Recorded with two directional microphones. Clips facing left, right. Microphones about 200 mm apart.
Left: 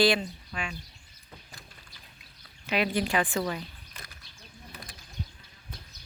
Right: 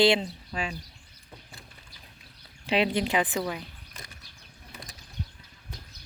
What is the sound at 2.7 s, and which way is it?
Speech, 25° right (ahead or behind).